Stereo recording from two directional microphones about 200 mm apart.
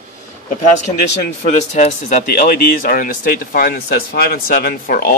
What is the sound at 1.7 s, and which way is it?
Speech, 45° left (ahead or behind).